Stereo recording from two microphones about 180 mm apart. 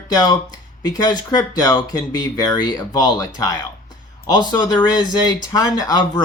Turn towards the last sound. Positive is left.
turn(degrees=20)  # may be behind; listen again after turning